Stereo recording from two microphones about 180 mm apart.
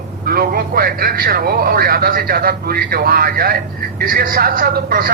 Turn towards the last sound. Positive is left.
turn(degrees=-50)  # may be behind; listen again after turning